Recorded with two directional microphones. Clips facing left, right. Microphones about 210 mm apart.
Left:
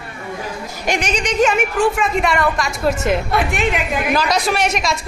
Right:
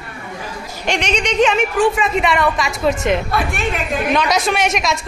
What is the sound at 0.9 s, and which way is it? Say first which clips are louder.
A woman's voice: right 1 dB; 5° left (ahead or behind).